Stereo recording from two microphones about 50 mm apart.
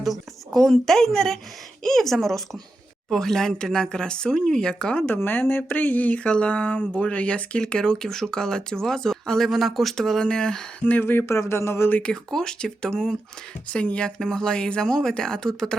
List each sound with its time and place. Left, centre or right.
0.0 s speech: centre
5.0 s speech: left
6.2 s speech: left
11.0 s speech: left
11.3 s a sound: left
12.0 s speech: centre
13.7 s speech: left